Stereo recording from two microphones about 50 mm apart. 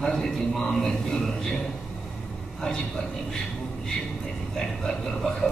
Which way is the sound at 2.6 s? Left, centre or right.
Centre.